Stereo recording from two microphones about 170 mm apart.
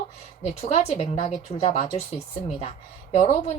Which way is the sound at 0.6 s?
40° left (ahead or behind).